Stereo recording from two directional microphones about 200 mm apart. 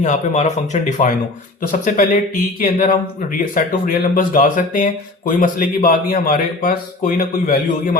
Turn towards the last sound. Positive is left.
turn(degrees=45)  # may be behind; listen again after turning